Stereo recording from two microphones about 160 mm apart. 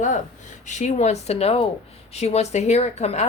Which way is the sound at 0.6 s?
50° left (ahead or behind).